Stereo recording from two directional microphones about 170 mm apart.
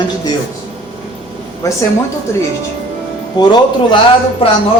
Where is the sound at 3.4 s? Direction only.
25° left (ahead or behind).